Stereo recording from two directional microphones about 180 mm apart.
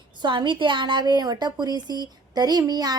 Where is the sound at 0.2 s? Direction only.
25° right (ahead or behind).